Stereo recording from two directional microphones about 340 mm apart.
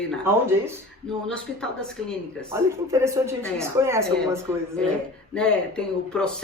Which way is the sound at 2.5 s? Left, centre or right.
Centre.